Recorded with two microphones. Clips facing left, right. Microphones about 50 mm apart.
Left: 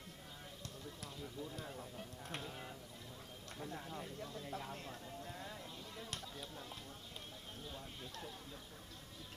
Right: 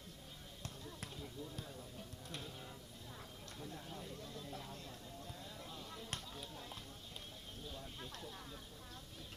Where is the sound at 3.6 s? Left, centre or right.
Left.